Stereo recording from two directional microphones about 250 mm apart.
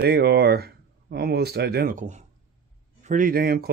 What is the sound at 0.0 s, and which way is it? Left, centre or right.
Speech, right.